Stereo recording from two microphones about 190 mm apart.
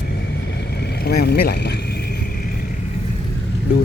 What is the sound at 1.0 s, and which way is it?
Vehicle, 55° left (ahead or behind).